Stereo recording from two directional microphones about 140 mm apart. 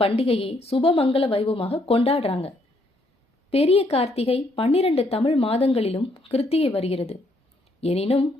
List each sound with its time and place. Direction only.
0.0 s a woman's voice: 45° left (ahead or behind)
3.5 s a woman's voice: 45° left (ahead or behind)